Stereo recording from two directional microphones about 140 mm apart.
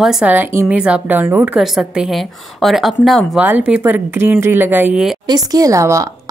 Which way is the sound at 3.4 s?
10° right (ahead or behind).